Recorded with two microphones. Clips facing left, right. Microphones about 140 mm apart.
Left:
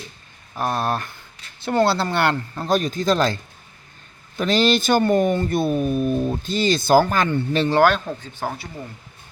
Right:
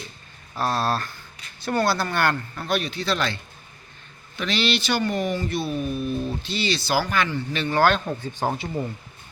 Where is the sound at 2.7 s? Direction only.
45° left (ahead or behind).